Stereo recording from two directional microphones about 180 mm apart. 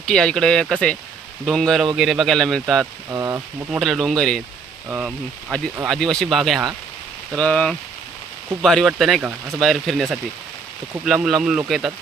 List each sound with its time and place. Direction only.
0.0 s speech: 5° left (ahead or behind)
3.1 s speech: 15° right (ahead or behind)
3.7 s speech: centre (ahead or behind)